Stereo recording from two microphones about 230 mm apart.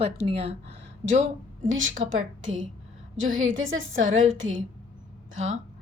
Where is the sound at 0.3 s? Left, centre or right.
Right.